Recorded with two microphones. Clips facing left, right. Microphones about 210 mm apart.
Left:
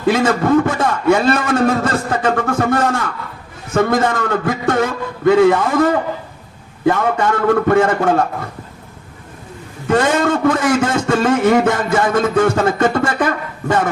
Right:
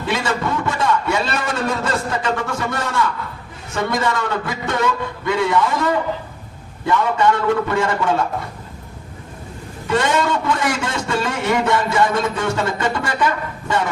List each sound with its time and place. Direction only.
0.1 s a man's voice: 50° left (ahead or behind)
9.8 s a man's voice: 50° left (ahead or behind)